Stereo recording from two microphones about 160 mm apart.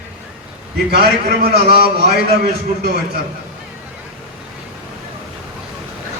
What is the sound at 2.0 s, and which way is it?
A man's voice, 90° right.